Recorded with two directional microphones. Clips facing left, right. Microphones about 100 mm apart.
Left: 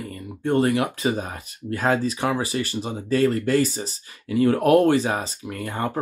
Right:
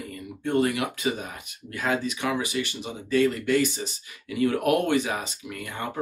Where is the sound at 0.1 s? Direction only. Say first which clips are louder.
Left 3 dB; 35° left (ahead or behind).